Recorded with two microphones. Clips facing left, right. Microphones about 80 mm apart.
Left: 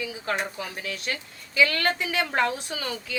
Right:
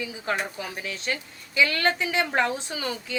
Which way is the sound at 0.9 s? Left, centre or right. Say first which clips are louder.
Right 1 dB; right.